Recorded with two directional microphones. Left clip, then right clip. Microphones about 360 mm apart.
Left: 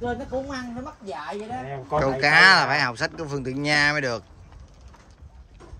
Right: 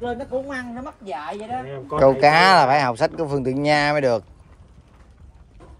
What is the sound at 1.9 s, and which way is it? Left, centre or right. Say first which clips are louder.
Speech: right 4 dB; centre.